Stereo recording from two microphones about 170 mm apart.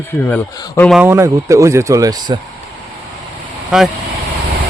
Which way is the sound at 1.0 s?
15° right (ahead or behind).